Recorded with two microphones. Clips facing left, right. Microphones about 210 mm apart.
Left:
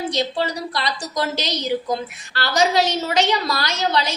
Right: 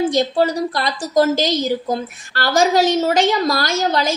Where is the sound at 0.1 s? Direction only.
45° right (ahead or behind).